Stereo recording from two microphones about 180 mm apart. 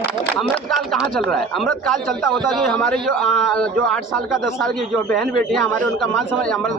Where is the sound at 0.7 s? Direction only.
Centre (ahead or behind).